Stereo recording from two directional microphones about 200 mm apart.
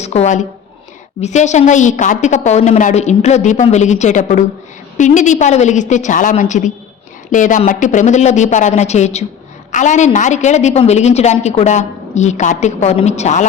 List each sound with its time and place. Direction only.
0.0 s a woman's voice: 35° left (ahead or behind)